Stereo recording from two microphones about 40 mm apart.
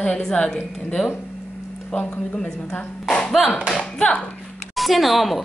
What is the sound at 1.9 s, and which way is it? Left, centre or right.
Speech, left.